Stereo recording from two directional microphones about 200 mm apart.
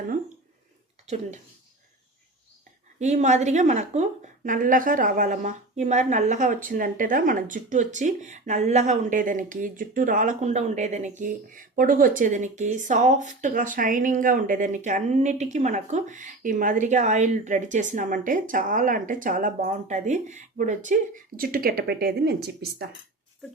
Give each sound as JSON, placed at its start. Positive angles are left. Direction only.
{"t": 1.0, "sound": "speech", "side_deg": -35}
{"t": 3.0, "sound": "speech", "side_deg": -35}